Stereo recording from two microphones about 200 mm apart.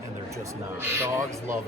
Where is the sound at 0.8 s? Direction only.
10° right (ahead or behind).